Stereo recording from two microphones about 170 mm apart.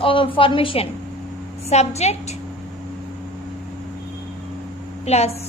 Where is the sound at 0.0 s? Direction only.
30° left (ahead or behind).